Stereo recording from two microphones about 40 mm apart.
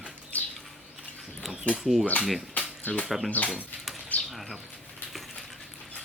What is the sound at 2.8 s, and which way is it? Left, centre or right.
Speech, left.